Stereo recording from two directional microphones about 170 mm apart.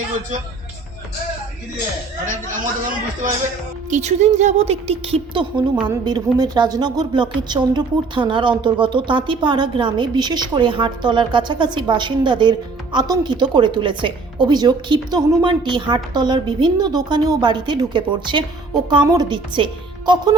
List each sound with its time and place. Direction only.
3.8 s a woman's voice: 45° right (ahead or behind); by 20.3 s 25° right (ahead or behind)